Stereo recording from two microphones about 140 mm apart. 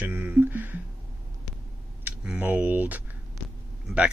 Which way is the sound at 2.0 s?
10° right (ahead or behind).